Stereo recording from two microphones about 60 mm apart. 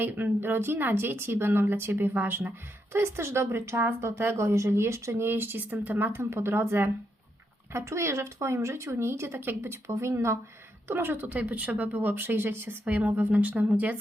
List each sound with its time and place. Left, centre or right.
0.0 s speech: right
7.7 s speech: right
10.8 s speech: right
12.8 s speech: right